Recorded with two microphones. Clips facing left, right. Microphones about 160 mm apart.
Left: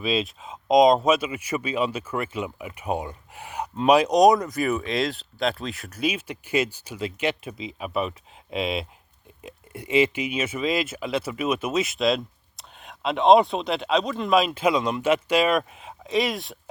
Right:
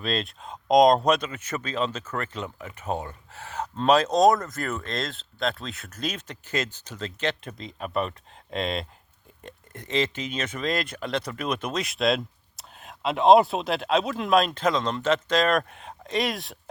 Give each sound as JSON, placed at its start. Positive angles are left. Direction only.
{"t": 0.0, "sound": "speech", "side_deg": 5}
{"t": 4.9, "sound": "speech", "side_deg": 5}